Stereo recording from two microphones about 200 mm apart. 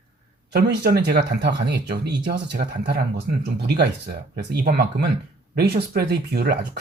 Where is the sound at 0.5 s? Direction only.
50° right (ahead or behind).